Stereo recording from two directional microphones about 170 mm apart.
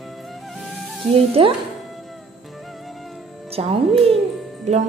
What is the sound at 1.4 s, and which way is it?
Speech, 30° right (ahead or behind).